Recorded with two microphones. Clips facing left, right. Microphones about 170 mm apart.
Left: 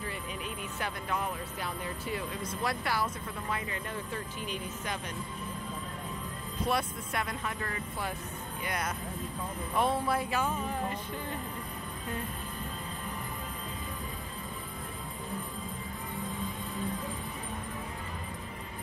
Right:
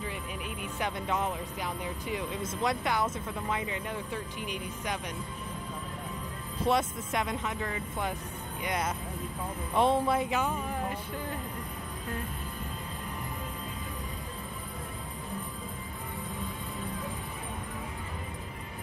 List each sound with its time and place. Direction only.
0.7 s speech: 20° right (ahead or behind)
6.6 s speech: 20° right (ahead or behind)
8.6 s speech: 25° right (ahead or behind)